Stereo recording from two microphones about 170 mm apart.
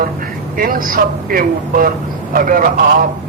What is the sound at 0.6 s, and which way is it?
Speech, 55° right (ahead or behind).